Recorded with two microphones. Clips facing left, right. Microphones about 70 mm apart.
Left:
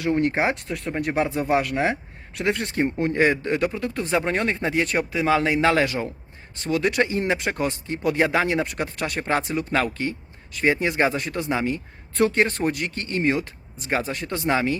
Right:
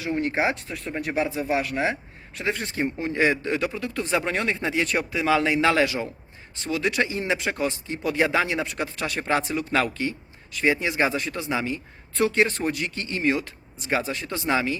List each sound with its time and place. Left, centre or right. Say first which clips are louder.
0.0 s speech: left 3 dB; left